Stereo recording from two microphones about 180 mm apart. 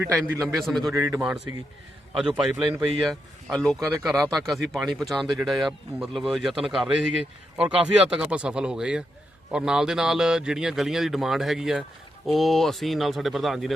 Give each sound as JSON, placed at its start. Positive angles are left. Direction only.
{"t": 0.0, "sound": "a man's voice", "side_deg": -10}
{"t": 0.4, "sound": "speech", "side_deg": 0}
{"t": 0.9, "sound": "a man's voice", "side_deg": -20}
{"t": 2.1, "sound": "speech", "side_deg": -5}